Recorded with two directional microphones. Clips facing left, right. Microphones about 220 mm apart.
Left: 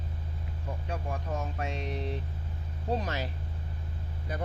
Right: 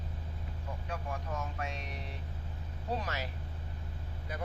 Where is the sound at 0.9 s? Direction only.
25° left (ahead or behind).